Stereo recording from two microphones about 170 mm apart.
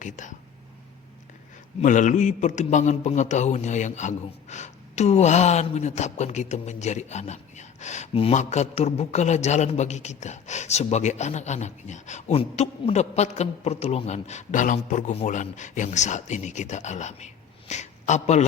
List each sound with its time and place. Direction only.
0.0 s a man's voice: 45° left (ahead or behind)
1.8 s a man's voice: 50° left (ahead or behind)